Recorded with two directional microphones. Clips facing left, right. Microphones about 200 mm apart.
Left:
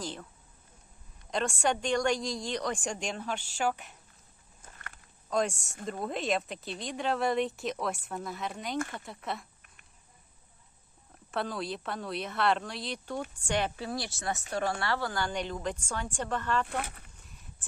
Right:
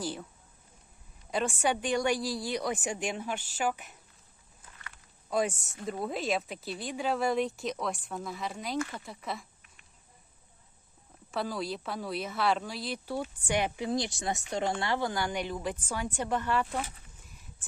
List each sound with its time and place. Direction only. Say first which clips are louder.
0.0 s speech: right 3 dB; 10° right (ahead or behind)
1.3 s speech: even; 5° right (ahead or behind)
5.3 s speech: even; 5° right (ahead or behind)
11.3 s speech: even; centre (ahead or behind)
16.6 s speech: even; 65° left (ahead or behind)